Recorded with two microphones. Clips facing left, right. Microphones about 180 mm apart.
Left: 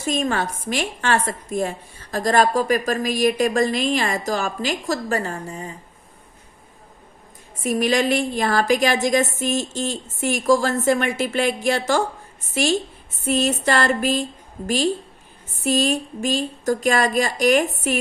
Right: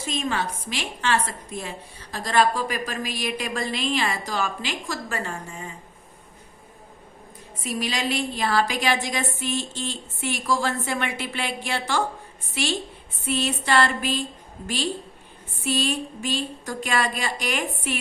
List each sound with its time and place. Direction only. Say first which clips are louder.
0.0 s a woman's voice: left 5 dB; 45° left (ahead or behind)
7.6 s a woman's voice: left 8 dB; 50° left (ahead or behind)
15.6 s a woman's voice: left 5 dB; 45° left (ahead or behind)